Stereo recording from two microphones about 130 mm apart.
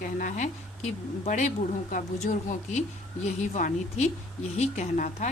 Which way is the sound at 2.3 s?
90° left.